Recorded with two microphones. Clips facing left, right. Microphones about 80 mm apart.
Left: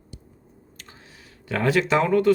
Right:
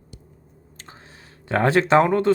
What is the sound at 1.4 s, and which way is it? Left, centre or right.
Speech, right.